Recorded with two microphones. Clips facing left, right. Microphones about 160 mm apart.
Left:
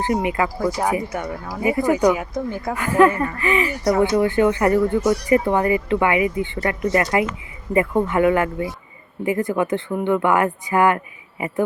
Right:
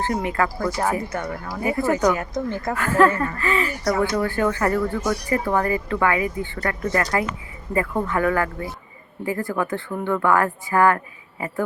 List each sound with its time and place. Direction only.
0.0 s speech: 15° left (ahead or behind)